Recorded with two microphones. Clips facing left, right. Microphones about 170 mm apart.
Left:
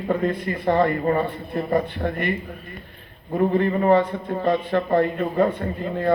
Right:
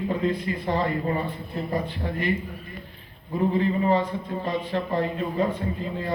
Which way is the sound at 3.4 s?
60° left (ahead or behind).